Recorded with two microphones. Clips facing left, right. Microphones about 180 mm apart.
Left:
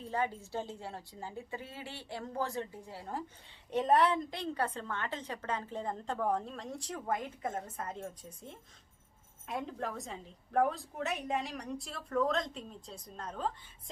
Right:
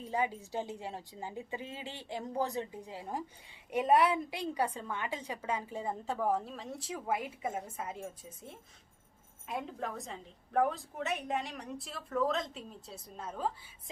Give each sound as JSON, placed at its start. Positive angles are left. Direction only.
{"t": 0.0, "sound": "a woman's voice", "side_deg": -15}